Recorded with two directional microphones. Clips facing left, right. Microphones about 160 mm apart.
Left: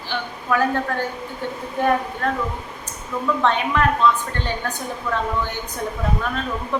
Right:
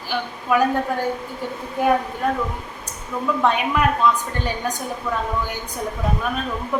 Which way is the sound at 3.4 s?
10° right (ahead or behind).